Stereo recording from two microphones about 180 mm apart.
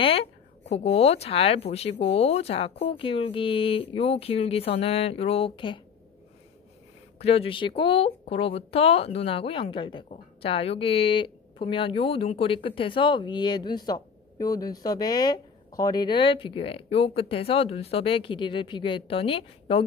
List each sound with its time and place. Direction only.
0.0 s speech: 35° left (ahead or behind)
7.2 s speech: 35° left (ahead or behind)